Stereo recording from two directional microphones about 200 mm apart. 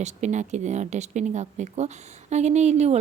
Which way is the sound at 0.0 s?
35° right (ahead or behind).